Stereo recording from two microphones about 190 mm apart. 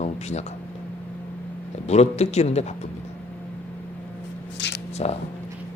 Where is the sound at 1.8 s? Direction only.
35° left (ahead or behind).